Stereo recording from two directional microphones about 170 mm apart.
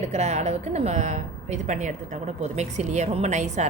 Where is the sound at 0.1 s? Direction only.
40° right (ahead or behind).